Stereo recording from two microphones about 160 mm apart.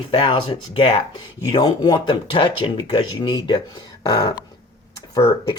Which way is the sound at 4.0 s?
25° left (ahead or behind).